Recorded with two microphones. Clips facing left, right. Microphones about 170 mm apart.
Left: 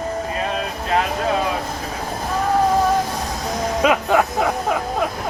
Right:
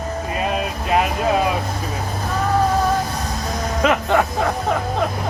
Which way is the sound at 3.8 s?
10° left (ahead or behind).